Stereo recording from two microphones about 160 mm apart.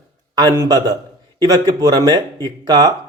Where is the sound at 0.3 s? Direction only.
20° right (ahead or behind).